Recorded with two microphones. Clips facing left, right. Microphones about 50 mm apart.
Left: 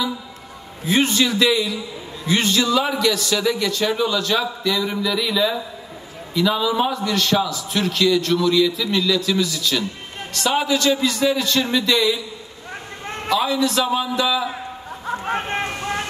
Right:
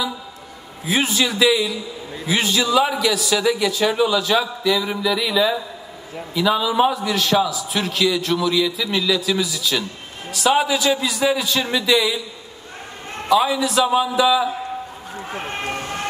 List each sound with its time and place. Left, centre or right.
0.8 s a man's voice: centre
13.3 s a man's voice: centre
15.0 s a sound: left